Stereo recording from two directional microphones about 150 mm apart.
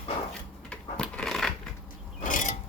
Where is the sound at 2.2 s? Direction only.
60° left (ahead or behind).